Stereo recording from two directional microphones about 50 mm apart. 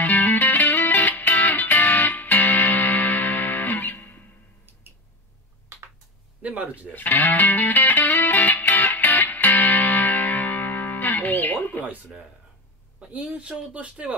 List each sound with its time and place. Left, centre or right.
0.0 s music: left
6.4 s speech: right
6.9 s music: left
13.1 s speech: right